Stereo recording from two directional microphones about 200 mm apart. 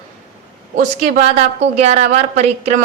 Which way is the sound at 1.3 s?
35° right (ahead or behind).